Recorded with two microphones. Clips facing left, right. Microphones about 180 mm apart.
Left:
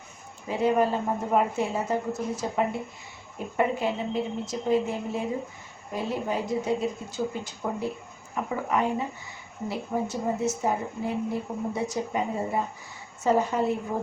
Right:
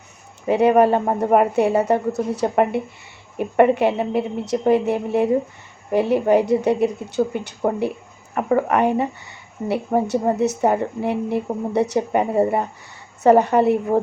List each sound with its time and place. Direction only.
0.4 s speech: 65° right (ahead or behind)